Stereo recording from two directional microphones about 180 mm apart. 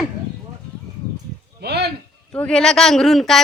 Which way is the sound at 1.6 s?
65° right (ahead or behind).